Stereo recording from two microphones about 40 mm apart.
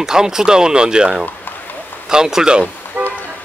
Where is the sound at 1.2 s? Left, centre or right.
Left.